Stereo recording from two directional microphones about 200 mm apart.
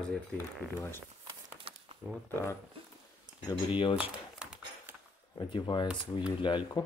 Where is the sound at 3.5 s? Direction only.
25° left (ahead or behind).